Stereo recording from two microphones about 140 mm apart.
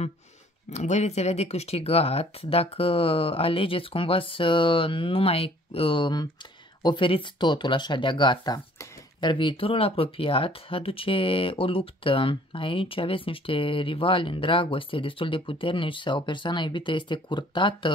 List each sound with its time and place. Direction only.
0.7 s speech: 55° left (ahead or behind); by 17.9 s 35° left (ahead or behind)